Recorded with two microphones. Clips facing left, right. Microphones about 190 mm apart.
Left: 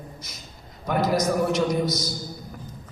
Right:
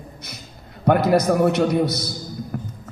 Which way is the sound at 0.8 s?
60° right (ahead or behind).